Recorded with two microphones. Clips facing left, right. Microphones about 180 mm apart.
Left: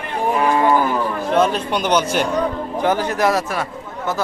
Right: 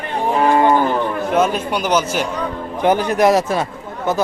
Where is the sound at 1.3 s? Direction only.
5° right (ahead or behind).